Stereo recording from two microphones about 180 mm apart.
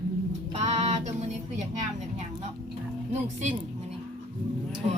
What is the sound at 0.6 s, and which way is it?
Music, 40° right (ahead or behind).